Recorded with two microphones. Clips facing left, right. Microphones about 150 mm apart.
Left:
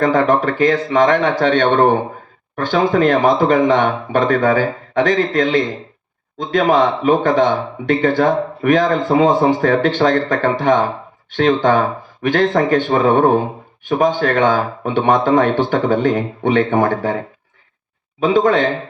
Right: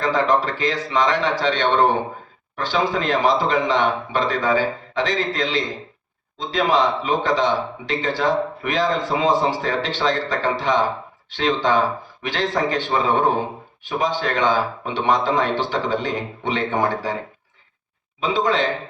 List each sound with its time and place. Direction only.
0.0 s speech: 55° left (ahead or behind)
18.2 s speech: 50° left (ahead or behind)